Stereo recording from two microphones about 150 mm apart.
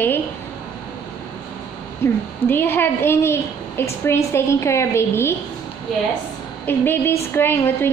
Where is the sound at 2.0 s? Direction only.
15° left (ahead or behind).